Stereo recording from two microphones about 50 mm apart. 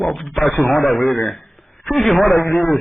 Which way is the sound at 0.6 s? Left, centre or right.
Left.